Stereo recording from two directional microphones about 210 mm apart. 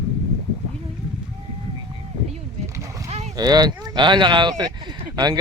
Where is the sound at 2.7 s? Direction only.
15° right (ahead or behind).